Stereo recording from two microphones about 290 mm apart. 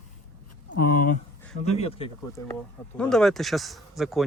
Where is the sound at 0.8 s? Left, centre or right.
Left.